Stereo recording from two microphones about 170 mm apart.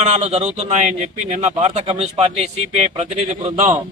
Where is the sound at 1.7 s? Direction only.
30° right (ahead or behind).